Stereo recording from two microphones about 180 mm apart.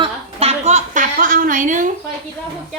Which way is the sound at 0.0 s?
35° right (ahead or behind).